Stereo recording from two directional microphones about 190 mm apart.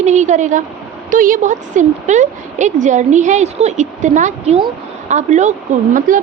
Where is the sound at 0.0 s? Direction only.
40° right (ahead or behind).